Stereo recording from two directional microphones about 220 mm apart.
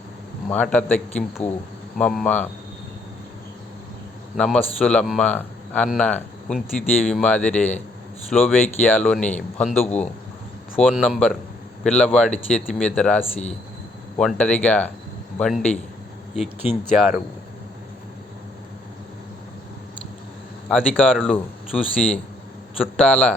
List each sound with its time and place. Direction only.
0.5 s a man's voice: 5° left (ahead or behind)
1.4 s speech: 30° left (ahead or behind)
2.0 s a man's voice: 5° left (ahead or behind)
4.4 s a man's voice: centre (ahead or behind)
20.7 s a man's voice: centre (ahead or behind)